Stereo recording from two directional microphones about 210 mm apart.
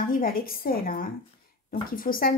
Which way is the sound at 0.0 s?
40° left (ahead or behind).